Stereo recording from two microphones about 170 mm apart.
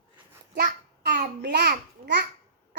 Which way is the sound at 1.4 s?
70° right (ahead or behind).